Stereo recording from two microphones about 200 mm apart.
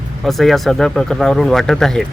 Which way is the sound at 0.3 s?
Centre (ahead or behind).